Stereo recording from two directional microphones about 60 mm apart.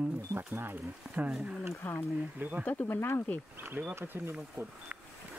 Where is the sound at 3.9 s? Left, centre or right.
Right.